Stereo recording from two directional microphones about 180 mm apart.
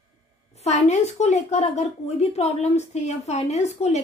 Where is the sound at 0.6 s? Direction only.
40° left (ahead or behind).